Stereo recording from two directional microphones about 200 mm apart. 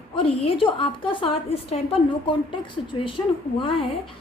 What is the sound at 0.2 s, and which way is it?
A woman's voice, 25° left (ahead or behind).